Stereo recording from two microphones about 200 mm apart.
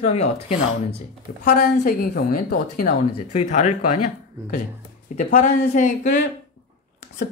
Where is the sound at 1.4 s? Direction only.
50° left (ahead or behind).